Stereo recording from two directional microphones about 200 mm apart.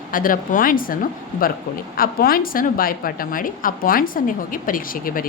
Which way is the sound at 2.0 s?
45° left (ahead or behind).